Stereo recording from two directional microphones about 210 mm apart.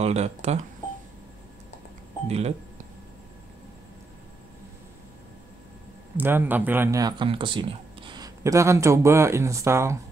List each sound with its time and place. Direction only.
0.0 s speech: 30° right (ahead or behind)
2.2 s speech: 30° right (ahead or behind)
6.1 s speech: 10° right (ahead or behind)